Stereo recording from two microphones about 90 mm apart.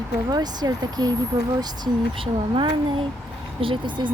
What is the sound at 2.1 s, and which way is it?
Speech, 75° right (ahead or behind).